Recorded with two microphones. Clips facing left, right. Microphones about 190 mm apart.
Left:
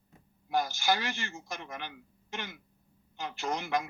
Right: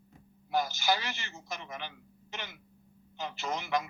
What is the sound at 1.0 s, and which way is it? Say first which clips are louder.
Speech: left 4 dB; 50° left (ahead or behind).